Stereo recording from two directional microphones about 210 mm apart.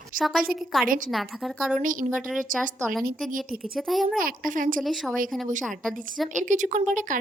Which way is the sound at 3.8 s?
Centre (ahead or behind).